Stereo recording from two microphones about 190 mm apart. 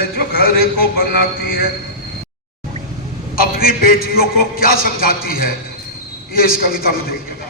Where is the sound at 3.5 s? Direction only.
50° left (ahead or behind).